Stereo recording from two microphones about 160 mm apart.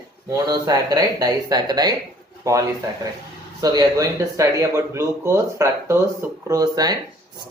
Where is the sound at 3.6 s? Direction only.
25° right (ahead or behind).